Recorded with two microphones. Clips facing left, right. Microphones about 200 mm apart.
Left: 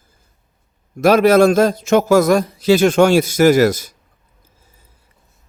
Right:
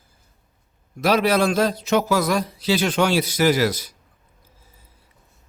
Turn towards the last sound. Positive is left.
turn(degrees=45)  # may be behind; listen again after turning